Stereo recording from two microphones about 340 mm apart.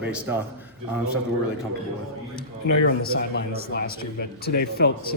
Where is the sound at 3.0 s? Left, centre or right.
Left.